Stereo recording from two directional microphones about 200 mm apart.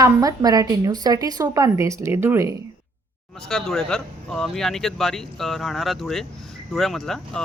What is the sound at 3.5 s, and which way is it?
Speech, centre (ahead or behind).